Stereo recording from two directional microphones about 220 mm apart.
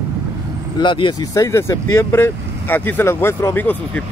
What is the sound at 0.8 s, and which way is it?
Speech, 20° left (ahead or behind).